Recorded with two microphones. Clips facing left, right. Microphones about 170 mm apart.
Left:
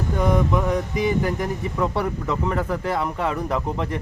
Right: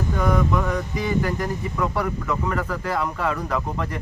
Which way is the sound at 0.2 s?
20° left (ahead or behind).